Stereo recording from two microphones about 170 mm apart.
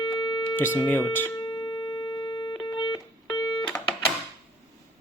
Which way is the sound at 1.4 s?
25° left (ahead or behind).